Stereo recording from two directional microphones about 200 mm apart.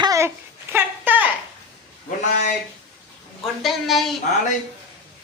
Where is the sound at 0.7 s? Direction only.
10° right (ahead or behind).